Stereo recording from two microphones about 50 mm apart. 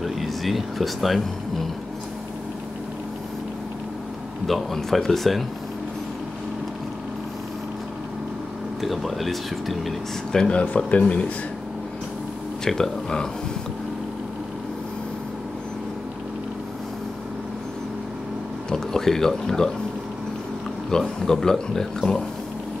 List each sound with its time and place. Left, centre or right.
0.0 s speech: centre
4.5 s speech: centre
8.8 s speech: centre
10.3 s speech: centre
10.6 s speech: left
12.6 s speech: centre
18.7 s speech: centre
20.9 s speech: centre